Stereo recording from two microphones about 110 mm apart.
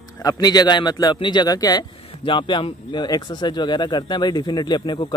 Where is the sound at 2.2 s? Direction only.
45° left (ahead or behind).